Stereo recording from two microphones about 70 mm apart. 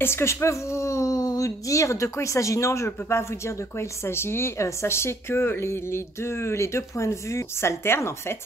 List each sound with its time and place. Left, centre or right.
0.0 s a woman's voice: left